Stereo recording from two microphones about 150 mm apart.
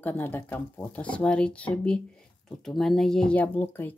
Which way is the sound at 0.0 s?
15° left (ahead or behind).